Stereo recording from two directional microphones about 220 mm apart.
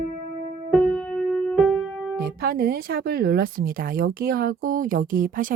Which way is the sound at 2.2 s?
45° right (ahead or behind).